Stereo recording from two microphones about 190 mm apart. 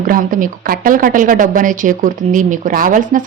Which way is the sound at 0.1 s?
45° right (ahead or behind).